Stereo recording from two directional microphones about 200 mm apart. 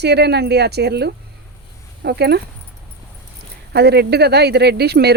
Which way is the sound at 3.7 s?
55° right (ahead or behind).